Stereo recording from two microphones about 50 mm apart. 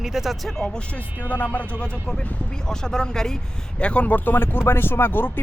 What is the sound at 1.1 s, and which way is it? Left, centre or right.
Speech, left.